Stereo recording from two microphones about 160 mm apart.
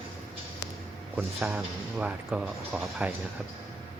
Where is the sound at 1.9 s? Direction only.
5° right (ahead or behind).